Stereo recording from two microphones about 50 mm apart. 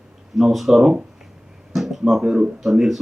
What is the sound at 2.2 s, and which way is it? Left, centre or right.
Speech, centre.